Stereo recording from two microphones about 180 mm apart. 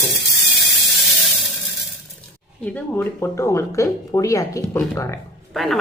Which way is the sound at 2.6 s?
10° left (ahead or behind).